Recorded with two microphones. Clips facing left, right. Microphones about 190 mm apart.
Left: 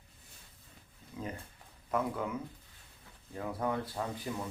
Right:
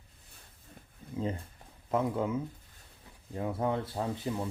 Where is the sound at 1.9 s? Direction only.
25° right (ahead or behind).